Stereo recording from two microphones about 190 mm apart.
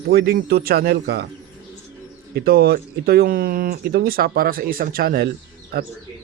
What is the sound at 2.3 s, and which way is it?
Speech, 55° right (ahead or behind).